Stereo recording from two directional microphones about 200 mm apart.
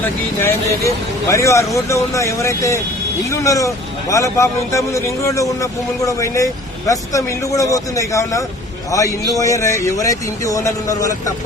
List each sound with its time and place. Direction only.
0.0 s a man's voice: 10° left (ahead or behind)